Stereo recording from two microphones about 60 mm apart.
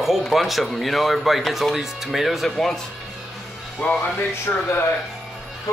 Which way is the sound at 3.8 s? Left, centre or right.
Centre.